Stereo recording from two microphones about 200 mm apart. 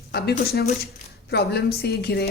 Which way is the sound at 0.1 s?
50° left (ahead or behind).